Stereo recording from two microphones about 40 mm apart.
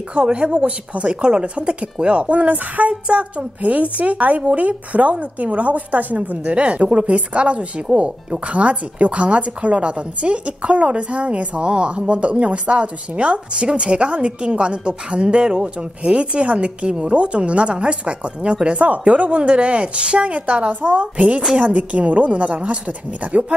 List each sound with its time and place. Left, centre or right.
0.1 s a woman's voice: right
2.9 s a woman's voice: right